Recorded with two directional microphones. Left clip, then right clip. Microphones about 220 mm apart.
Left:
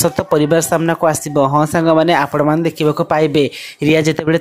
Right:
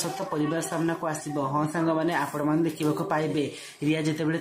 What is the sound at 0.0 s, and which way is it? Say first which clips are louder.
Speech: left 15 dB; 45° left (ahead or behind).